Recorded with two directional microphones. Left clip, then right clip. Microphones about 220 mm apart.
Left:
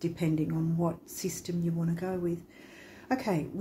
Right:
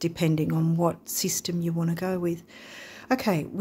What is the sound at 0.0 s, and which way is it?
Speech, 45° right (ahead or behind).